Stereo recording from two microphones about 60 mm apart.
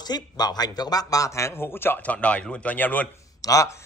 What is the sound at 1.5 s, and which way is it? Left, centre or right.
Speech, left.